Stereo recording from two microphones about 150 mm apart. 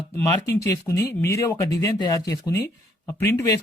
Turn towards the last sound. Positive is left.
turn(degrees=20)  # may be behind; listen again after turning